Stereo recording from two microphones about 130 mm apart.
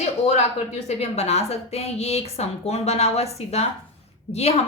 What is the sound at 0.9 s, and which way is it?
A woman's voice, 55° left (ahead or behind).